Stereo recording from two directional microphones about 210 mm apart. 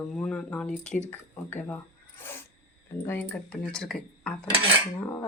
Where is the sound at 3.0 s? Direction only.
10° left (ahead or behind).